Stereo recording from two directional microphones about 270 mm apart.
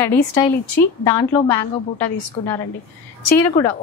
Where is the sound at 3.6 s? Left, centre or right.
Left.